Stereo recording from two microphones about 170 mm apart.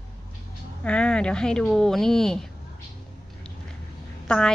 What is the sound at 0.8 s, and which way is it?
A woman's voice, 5° left (ahead or behind).